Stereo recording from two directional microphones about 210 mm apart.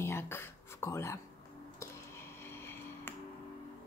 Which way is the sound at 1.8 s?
10° left (ahead or behind).